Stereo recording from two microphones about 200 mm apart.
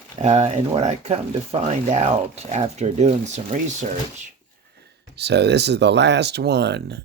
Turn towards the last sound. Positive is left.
turn(degrees=-55)  # may be behind; listen again after turning